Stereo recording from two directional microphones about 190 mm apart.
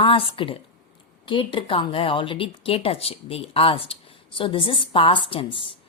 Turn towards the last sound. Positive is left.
turn(degrees=25)  # may be behind; listen again after turning